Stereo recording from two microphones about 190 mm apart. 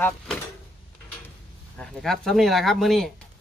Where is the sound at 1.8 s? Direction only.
Centre (ahead or behind).